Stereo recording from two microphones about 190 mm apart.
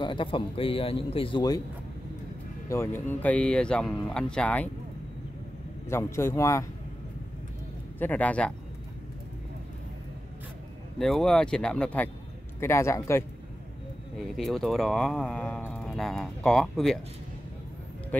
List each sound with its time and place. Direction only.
0.0 s a man's voice: 25° left (ahead or behind)
2.7 s speech: 15° left (ahead or behind)
5.9 s a man's voice: 15° left (ahead or behind)
8.0 s a man's voice: 10° left (ahead or behind)
11.0 s a man's voice: centre (ahead or behind)
14.1 s speech: centre (ahead or behind)